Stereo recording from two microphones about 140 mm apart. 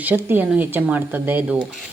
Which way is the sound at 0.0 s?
10° right (ahead or behind).